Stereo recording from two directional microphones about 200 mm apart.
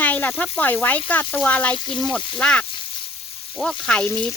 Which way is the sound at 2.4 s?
5° left (ahead or behind).